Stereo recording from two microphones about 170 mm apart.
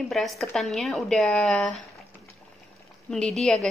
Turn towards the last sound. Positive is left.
turn(degrees=5)  # may be behind; listen again after turning